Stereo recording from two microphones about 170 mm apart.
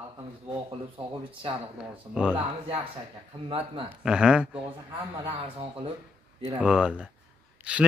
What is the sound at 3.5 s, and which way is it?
Speech, 30° right (ahead or behind).